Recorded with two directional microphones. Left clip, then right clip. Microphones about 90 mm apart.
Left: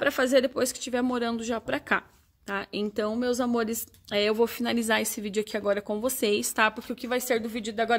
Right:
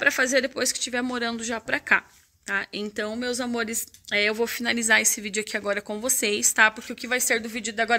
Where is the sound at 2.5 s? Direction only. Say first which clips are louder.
Right 3 dB; 35° left (ahead or behind).